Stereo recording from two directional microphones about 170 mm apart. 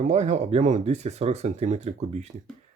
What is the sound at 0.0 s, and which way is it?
Speech, 40° right (ahead or behind).